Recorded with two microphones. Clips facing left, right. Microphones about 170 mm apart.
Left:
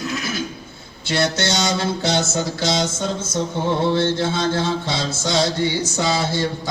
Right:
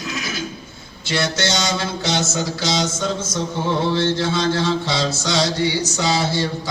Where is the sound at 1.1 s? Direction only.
55° left (ahead or behind).